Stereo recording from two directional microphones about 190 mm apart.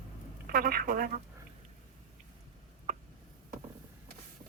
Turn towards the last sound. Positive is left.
turn(degrees=-35)  # may be behind; listen again after turning